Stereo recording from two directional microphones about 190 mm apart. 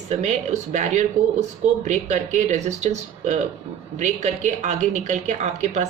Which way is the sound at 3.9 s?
40° right (ahead or behind).